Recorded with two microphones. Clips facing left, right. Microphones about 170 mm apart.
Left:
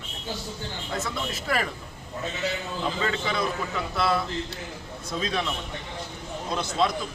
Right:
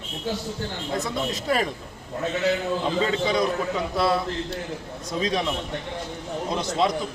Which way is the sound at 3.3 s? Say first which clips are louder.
Right 5 dB; 15° right (ahead or behind).